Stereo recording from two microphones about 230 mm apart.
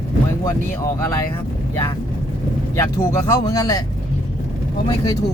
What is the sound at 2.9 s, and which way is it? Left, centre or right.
Speech, centre.